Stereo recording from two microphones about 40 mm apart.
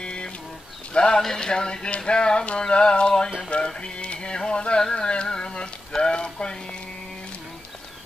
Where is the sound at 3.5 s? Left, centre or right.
Left.